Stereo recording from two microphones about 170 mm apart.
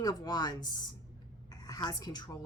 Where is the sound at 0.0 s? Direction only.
25° left (ahead or behind).